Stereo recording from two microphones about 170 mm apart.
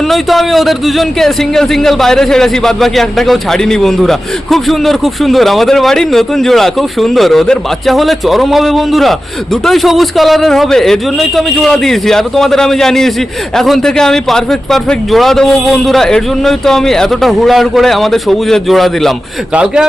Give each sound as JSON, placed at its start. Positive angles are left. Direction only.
{"t": 0.1, "sound": "speech", "side_deg": 0}